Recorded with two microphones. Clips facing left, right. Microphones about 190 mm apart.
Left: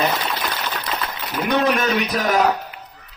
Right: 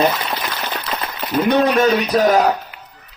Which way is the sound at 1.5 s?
35° right (ahead or behind).